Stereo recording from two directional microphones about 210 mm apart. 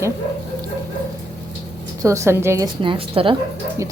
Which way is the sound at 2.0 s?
15° right (ahead or behind).